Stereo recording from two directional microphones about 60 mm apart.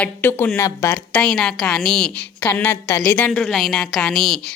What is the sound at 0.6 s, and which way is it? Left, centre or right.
Speech, left.